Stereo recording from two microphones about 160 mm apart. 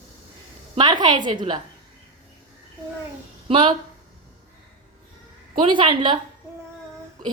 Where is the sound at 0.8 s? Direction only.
25° right (ahead or behind).